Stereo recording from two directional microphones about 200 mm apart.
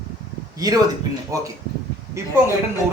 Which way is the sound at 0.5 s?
20° right (ahead or behind).